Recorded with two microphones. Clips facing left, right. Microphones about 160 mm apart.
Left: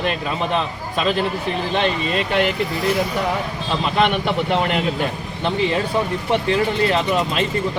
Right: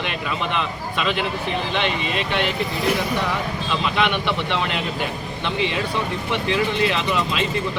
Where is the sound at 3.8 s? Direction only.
40° left (ahead or behind).